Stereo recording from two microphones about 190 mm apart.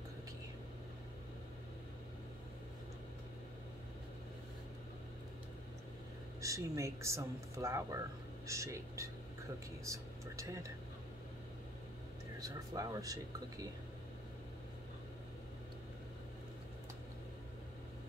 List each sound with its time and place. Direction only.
6.4 s speech: 15° right (ahead or behind)
12.4 s speech: 20° right (ahead or behind)